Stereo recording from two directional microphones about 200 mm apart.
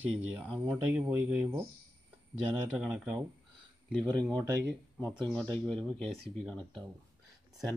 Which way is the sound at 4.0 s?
5° left (ahead or behind).